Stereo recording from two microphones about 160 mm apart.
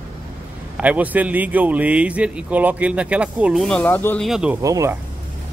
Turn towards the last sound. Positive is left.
turn(degrees=-20)  # may be behind; listen again after turning